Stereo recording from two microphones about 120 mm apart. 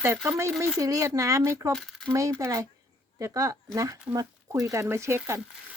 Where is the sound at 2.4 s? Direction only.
30° right (ahead or behind).